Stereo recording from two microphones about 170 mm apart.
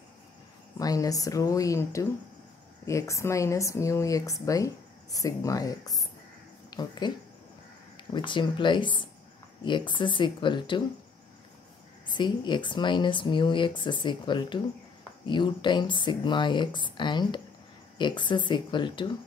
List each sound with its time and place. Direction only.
0.7 s speech: 20° left (ahead or behind)
8.1 s speech: 30° left (ahead or behind)
12.2 s speech: 25° left (ahead or behind)